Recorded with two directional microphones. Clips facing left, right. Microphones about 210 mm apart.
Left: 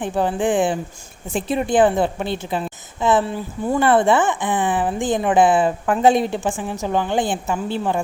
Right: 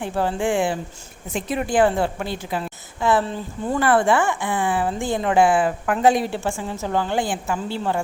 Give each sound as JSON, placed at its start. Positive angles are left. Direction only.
{"t": 0.0, "sound": "a woman's voice", "side_deg": 20}
{"t": 1.3, "sound": "a woman's voice", "side_deg": 30}
{"t": 3.8, "sound": "a woman's voice", "side_deg": 25}